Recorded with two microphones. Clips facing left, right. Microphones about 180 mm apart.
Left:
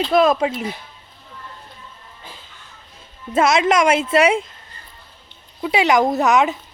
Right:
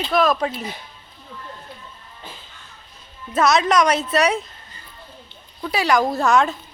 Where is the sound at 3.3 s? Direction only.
25° left (ahead or behind).